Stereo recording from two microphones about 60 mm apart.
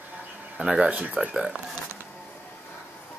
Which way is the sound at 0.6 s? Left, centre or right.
Right.